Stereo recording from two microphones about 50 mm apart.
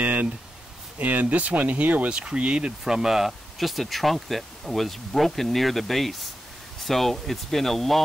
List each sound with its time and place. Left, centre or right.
0.0 s a sound: right
0.9 s speech: right
2.0 s speech: right
2.8 s speech: centre